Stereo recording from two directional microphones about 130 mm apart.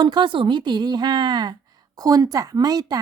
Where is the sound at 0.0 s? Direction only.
35° right (ahead or behind).